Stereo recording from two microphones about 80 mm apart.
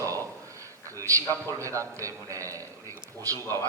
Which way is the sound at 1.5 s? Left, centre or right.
Right.